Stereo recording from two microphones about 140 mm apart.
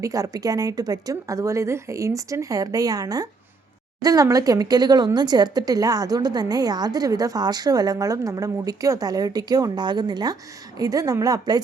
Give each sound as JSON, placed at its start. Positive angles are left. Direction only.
{"t": 0.0, "sound": "speech", "side_deg": -25}